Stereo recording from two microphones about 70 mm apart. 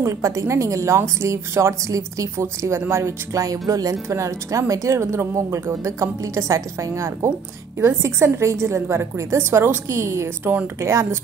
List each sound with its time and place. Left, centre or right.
0.0 s a woman's voice: right
2.4 s a woman's voice: right
4.1 s a woman's voice: right